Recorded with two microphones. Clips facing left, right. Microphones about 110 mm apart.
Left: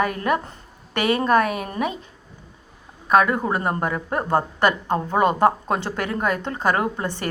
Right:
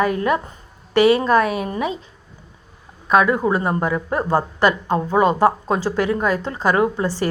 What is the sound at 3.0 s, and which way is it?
A woman's voice, 45° left (ahead or behind).